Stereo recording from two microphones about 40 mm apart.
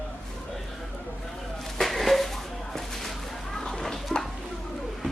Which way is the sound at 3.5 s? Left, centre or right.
Centre.